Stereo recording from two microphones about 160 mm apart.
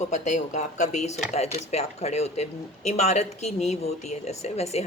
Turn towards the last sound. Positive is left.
turn(degrees=40)  # may be behind; listen again after turning